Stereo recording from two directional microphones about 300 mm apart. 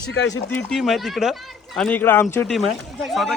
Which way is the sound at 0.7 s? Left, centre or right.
Centre.